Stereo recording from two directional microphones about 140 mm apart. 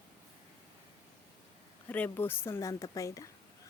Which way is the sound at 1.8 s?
15° left (ahead or behind).